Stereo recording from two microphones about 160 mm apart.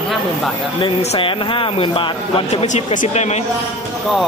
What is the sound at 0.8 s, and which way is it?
A man's voice, 35° left (ahead or behind).